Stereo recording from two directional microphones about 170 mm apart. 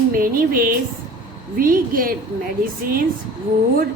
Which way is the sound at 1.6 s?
55° right (ahead or behind).